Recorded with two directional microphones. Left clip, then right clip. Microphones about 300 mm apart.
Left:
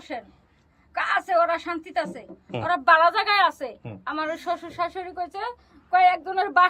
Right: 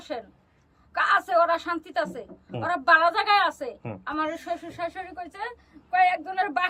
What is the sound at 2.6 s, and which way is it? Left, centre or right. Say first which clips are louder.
A woman's voice: left 2 dB; centre.